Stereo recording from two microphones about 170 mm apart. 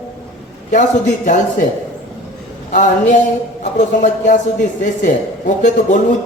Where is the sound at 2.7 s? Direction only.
50° left (ahead or behind).